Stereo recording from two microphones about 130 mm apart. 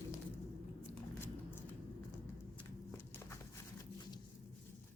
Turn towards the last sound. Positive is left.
turn(degrees=20)  # may be behind; listen again after turning